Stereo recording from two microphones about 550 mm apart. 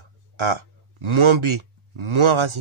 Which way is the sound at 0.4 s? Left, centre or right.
Right.